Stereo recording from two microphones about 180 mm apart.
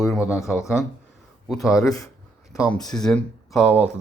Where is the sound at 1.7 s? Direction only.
20° left (ahead or behind).